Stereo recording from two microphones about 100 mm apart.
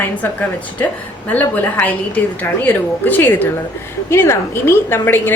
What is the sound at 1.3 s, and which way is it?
A woman's voice, 15° left (ahead or behind).